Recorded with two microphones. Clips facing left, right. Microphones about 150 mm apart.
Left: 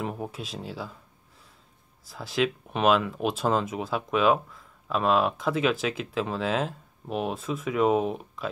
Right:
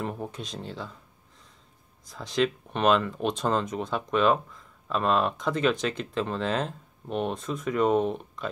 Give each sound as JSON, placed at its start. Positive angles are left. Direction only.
{"t": 0.0, "sound": "speech", "side_deg": 5}
{"t": 2.0, "sound": "speech", "side_deg": 5}